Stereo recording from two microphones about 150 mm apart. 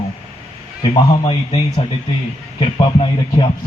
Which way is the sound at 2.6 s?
35° left (ahead or behind).